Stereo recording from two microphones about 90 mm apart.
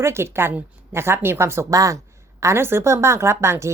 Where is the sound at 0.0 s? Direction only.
30° right (ahead or behind).